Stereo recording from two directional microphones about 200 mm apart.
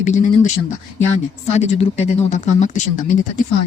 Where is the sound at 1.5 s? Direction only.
30° left (ahead or behind).